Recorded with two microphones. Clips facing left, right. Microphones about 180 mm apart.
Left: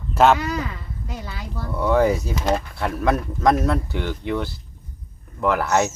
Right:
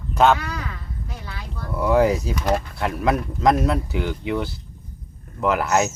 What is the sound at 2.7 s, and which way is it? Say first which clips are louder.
Speech: even; centre (ahead or behind).